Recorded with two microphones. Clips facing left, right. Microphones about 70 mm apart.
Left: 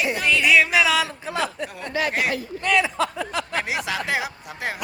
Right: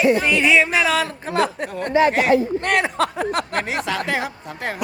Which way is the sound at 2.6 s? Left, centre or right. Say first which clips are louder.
Right 2 dB; right.